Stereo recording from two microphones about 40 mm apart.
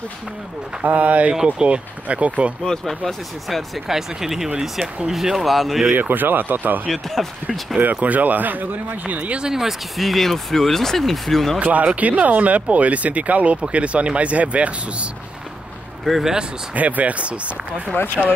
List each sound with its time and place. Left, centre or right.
0.8 s speech: right
1.3 s speech: right
2.0 s speech: right
3.1 s speech: centre
3.8 s speech: centre
5.9 s speech: right
6.9 s speech: centre
7.8 s speech: right
9.4 s speech: centre
11.6 s speech: right
16.1 s speech: centre
16.7 s speech: right
17.9 s speech: left